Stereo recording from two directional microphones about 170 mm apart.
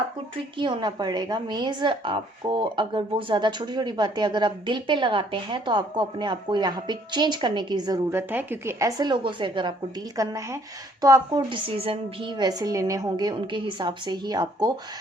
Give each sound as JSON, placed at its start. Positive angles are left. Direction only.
{"t": 0.6, "sound": "a woman's voice", "side_deg": -25}